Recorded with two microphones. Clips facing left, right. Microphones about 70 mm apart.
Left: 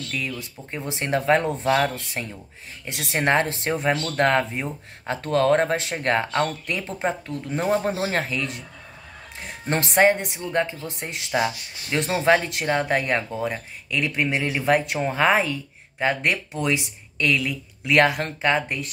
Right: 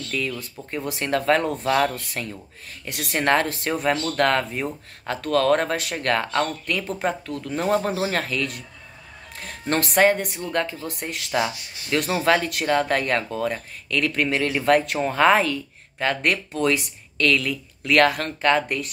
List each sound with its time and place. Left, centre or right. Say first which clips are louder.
0.7 s speech: right 1 dB; left